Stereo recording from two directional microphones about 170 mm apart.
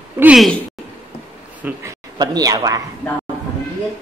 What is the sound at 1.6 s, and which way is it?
Speech, 15° right (ahead or behind).